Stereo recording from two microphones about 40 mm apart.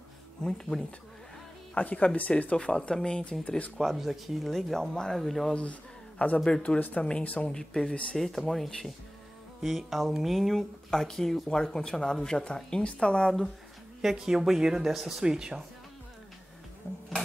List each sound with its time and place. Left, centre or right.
0.4 s speech: centre
1.8 s speech: left
2.5 s speech: left
3.4 s speech: left
3.8 s speech: centre
5.5 s speech: left
6.4 s speech: left
7.4 s speech: centre
9.6 s speech: centre; by 13.3 s left
14.0 s speech: centre
15.2 s speech: centre